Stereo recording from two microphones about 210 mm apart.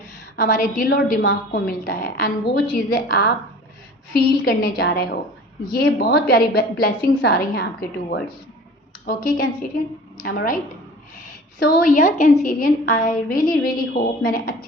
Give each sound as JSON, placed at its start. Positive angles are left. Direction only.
{"t": 0.3, "sound": "a woman's voice", "side_deg": 40}
{"t": 1.6, "sound": "a woman's voice", "side_deg": 40}
{"t": 11.6, "sound": "a woman's voice", "side_deg": 40}